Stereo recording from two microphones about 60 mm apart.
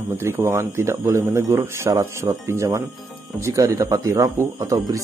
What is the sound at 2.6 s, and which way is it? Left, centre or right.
Speech, right.